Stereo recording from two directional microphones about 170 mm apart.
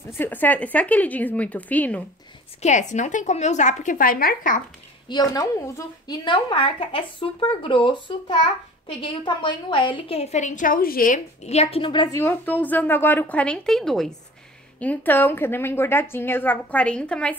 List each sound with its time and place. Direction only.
0.2 s a woman's voice: 10° left (ahead or behind)
2.6 s a woman's voice: 45° left (ahead or behind)
5.0 s a woman's voice: 25° left (ahead or behind); by 11.1 s 55° left (ahead or behind)
11.4 s a woman's voice: 40° left (ahead or behind)
12.2 s a woman's voice: 10° left (ahead or behind)